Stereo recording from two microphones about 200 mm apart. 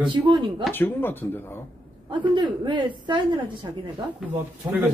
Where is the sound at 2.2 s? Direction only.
25° right (ahead or behind).